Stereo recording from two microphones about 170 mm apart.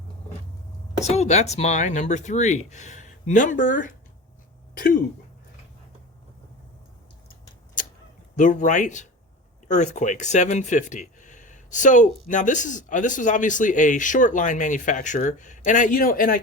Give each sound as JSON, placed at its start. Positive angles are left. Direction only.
{"t": 1.0, "sound": "speech", "side_deg": 40}
{"t": 8.4, "sound": "speech", "side_deg": 50}